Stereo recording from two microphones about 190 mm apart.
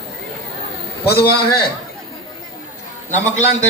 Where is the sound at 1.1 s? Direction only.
55° left (ahead or behind).